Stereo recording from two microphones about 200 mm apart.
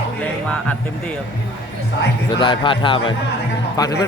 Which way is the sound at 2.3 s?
25° left (ahead or behind).